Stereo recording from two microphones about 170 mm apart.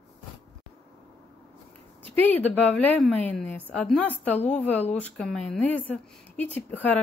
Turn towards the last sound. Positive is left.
turn(degrees=10)  # may be behind; listen again after turning